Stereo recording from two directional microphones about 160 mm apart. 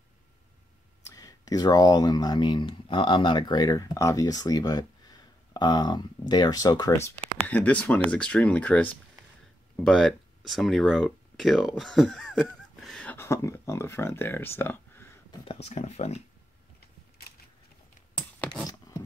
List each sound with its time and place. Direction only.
1.0 s speech: 20° left (ahead or behind)
7.4 s speech: 10° left (ahead or behind)
15.4 s speech: 40° left (ahead or behind)
18.7 s a sound: 20° left (ahead or behind)